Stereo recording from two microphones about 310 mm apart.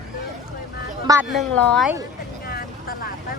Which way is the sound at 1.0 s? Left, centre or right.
Centre.